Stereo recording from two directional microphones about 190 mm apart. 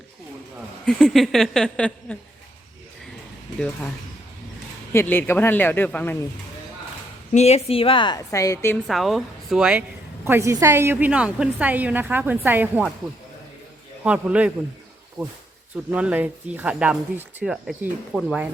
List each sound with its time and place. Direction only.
0.9 s speech: 5° left (ahead or behind)
4.9 s speech: 10° left (ahead or behind)
7.3 s a woman's voice: 35° left (ahead or behind); by 8.8 s 15° left (ahead or behind)
8.9 s a woman's voice: centre (ahead or behind)
14.0 s a woman's voice: 5° right (ahead or behind)
15.2 s speech: 20° right (ahead or behind)
15.9 s speech: 5° right (ahead or behind)